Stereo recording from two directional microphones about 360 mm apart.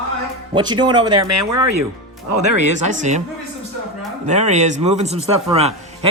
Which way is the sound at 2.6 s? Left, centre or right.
Centre.